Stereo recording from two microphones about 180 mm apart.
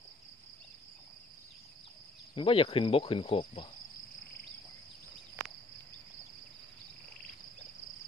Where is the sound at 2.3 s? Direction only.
30° left (ahead or behind).